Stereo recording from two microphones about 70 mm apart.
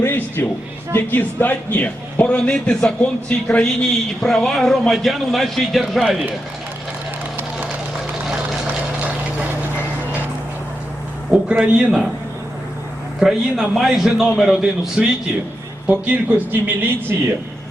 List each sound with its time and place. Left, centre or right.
0.0 s music: left
0.9 s a man's voice: left; by 6.1 s centre
9.0 s vehicle: right
11.3 s a man's voice: centre
13.1 s a man's voice: centre
14.6 s a man's voice: centre; by 17.2 s right